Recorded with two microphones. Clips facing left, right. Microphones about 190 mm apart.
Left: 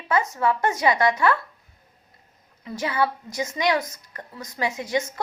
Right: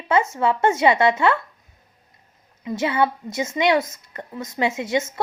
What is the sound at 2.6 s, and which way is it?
A woman's voice, 25° right (ahead or behind).